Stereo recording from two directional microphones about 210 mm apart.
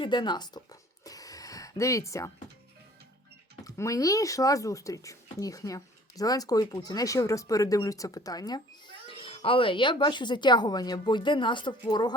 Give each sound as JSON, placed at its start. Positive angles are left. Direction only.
{"t": 0.0, "sound": "speech", "side_deg": 20}
{"t": 3.6, "sound": "speech", "side_deg": 15}